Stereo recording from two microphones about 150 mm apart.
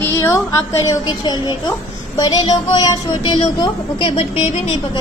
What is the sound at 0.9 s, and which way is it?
A child's voice, 25° left (ahead or behind).